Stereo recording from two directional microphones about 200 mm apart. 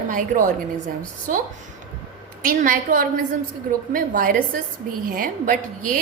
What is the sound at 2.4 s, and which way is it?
A woman's voice, 40° right (ahead or behind).